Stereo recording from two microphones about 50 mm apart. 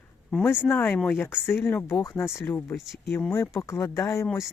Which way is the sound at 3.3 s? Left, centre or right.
Left.